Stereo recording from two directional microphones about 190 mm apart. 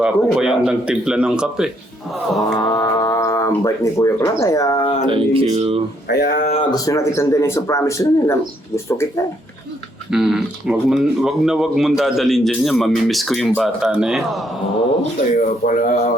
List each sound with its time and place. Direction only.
0.0 s speech: 5° right (ahead or behind)
2.6 s speech: 20° left (ahead or behind)
5.0 s speech: 30° right (ahead or behind)
6.1 s speech: 55° left (ahead or behind)
6.4 s speech: 35° left (ahead or behind)
6.7 s a man's voice: 20° left (ahead or behind)
10.1 s speech: centre (ahead or behind)
15.4 s speech: 45° left (ahead or behind)